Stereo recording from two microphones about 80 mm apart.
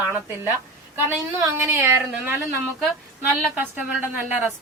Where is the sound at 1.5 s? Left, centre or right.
Right.